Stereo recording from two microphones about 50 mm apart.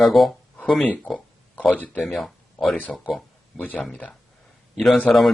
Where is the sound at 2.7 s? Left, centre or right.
Left.